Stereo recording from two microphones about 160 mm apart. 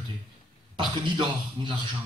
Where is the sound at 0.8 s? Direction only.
30° right (ahead or behind).